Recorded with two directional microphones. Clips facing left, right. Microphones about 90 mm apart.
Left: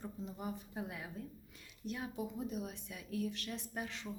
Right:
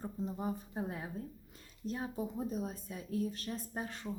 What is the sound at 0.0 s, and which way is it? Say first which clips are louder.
A woman's voice: right 5 dB; 35° right (ahead or behind).